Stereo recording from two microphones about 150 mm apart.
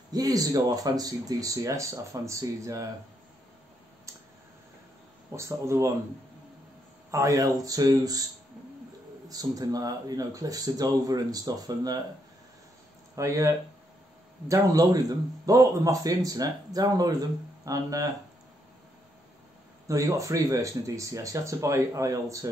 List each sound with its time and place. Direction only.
0.1 s speech: 25° right (ahead or behind)
5.3 s speech: 20° right (ahead or behind)
7.1 s speech: 20° right (ahead or behind)
9.3 s speech: 25° right (ahead or behind)
13.1 s speech: 20° right (ahead or behind)
19.9 s speech: 20° right (ahead or behind)